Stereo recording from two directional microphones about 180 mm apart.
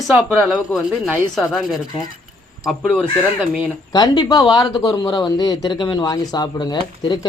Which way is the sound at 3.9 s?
25° left (ahead or behind).